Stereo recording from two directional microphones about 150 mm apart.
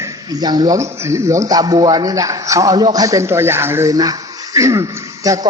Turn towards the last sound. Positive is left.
turn(degrees=-25)  # may be behind; listen again after turning